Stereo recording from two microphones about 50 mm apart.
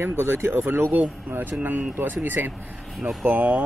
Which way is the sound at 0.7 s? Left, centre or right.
Right.